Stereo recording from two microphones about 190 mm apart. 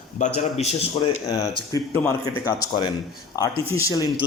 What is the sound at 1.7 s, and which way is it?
Speech, 15° left (ahead or behind).